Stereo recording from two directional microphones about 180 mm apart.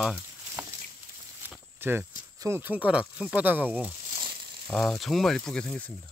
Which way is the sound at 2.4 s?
15° right (ahead or behind).